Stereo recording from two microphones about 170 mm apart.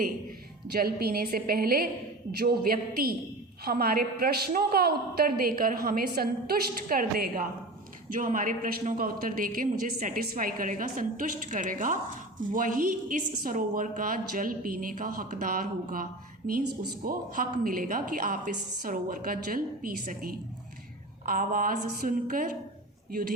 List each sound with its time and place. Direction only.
0.7 s a man's voice: 65° right (ahead or behind)